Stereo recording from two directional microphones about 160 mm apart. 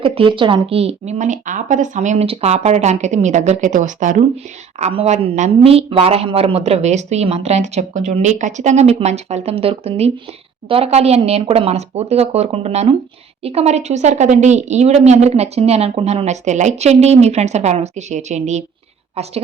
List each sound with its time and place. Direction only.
0.0 s speech: 35° right (ahead or behind); by 4.2 s 50° right (ahead or behind)
4.8 s a woman's voice: 40° right (ahead or behind)